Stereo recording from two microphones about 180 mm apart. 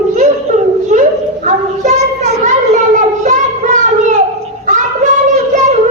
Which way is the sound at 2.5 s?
45° right (ahead or behind).